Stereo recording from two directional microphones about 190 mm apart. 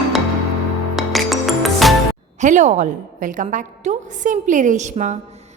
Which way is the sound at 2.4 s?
40° right (ahead or behind).